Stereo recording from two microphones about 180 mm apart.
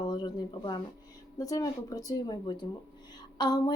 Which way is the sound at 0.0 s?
25° left (ahead or behind).